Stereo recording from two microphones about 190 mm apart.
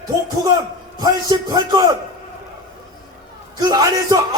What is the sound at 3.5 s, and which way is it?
Speech, 20° right (ahead or behind).